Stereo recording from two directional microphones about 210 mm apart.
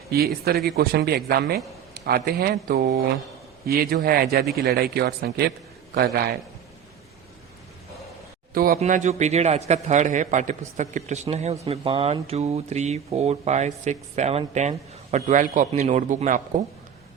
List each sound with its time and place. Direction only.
0.4 s a man's voice: 50° right (ahead or behind)
8.5 s a man's voice: 45° right (ahead or behind)
8.8 s a man's voice: 30° right (ahead or behind)